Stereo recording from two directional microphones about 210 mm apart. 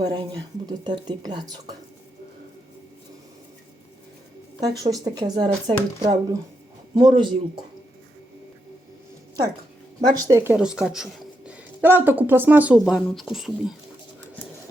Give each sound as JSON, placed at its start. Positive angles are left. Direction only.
{"t": 0.0, "sound": "speech", "side_deg": -20}
{"t": 4.6, "sound": "a woman's voice", "side_deg": -15}
{"t": 10.1, "sound": "a woman's voice", "side_deg": -15}